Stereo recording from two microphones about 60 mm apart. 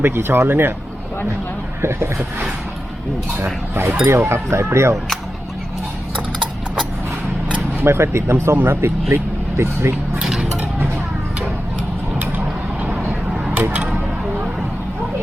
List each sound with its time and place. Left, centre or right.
0.0 s speech: right
1.8 s speech: right
3.3 s speech: right
7.8 s speech: right
13.1 s a sound: centre
13.6 s a sound: right